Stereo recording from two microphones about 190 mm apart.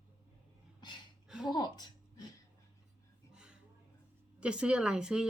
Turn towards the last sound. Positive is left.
turn(degrees=-5)  # may be behind; listen again after turning